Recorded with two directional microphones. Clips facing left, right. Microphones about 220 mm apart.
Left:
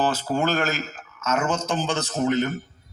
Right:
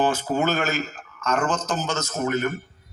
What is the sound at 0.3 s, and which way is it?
A man's voice, centre (ahead or behind).